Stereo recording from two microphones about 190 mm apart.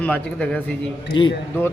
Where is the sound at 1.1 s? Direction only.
25° left (ahead or behind).